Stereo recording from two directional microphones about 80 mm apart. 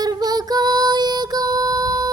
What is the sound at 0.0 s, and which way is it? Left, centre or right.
Music, right.